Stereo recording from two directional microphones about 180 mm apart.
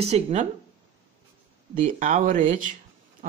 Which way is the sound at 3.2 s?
45° right (ahead or behind).